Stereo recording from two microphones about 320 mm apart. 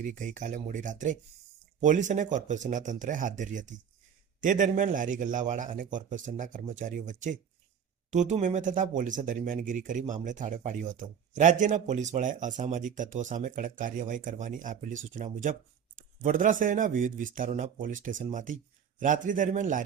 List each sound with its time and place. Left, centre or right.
0.0 s speech: right